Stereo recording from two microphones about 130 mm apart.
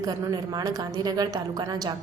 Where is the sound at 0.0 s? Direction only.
30° right (ahead or behind).